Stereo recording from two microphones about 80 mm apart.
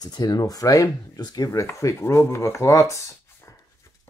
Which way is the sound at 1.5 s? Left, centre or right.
Left.